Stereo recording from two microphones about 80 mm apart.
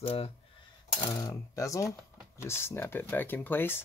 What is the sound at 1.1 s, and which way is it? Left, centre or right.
Speech, left.